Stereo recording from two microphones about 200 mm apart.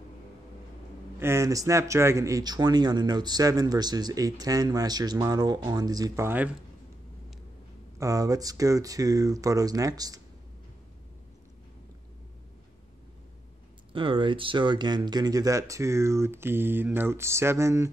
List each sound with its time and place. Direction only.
1.2 s speech: 15° right (ahead or behind)
8.0 s speech: 15° right (ahead or behind)
13.9 s speech: 25° right (ahead or behind)